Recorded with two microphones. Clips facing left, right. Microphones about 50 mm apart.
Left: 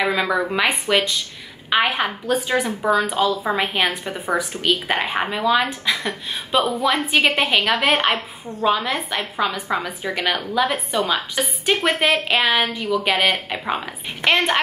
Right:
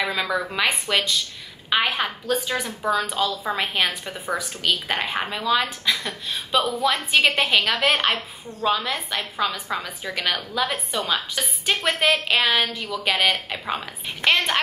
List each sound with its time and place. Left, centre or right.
0.0 s a woman's voice: centre
3.9 s a woman's voice: left